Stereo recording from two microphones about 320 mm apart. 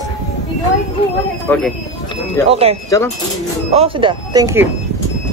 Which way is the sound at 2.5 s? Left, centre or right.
Centre.